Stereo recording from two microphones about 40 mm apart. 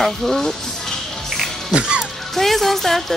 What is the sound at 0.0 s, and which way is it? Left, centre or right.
Speech, centre.